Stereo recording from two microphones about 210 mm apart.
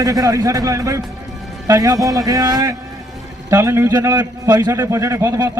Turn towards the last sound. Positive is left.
turn(degrees=-15)  # may be behind; listen again after turning